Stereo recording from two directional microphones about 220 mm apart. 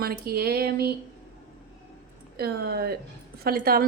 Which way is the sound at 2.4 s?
45° right (ahead or behind).